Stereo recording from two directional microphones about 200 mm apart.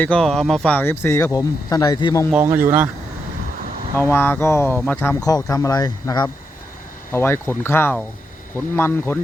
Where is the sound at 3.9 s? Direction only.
10° left (ahead or behind).